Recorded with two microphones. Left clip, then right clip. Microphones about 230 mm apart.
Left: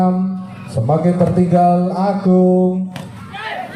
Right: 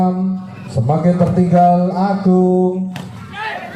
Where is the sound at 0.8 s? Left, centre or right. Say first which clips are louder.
Left 1 dB; left.